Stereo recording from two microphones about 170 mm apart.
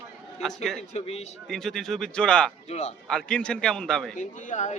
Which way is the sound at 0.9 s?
40° left (ahead or behind).